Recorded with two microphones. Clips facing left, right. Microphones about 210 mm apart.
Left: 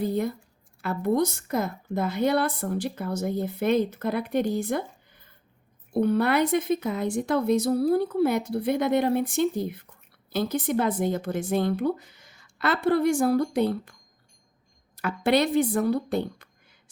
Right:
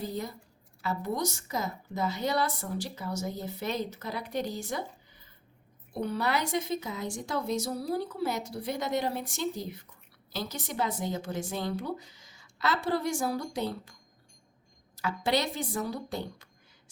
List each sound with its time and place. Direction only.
0.0 s a woman's voice: 55° left (ahead or behind)
14.9 s a woman's voice: 55° left (ahead or behind)